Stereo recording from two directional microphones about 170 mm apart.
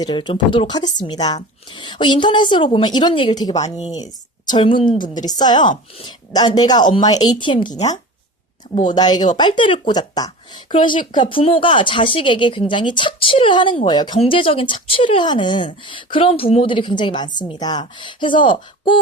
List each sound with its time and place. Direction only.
0.0 s speech: 30° left (ahead or behind)
8.9 s speech: 25° left (ahead or behind)